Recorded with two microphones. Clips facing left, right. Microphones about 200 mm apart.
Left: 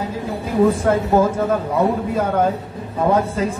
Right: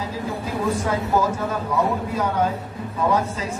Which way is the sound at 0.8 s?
55° left (ahead or behind).